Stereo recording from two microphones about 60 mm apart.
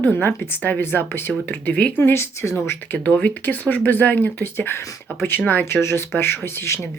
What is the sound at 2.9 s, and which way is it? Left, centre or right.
Speech, left.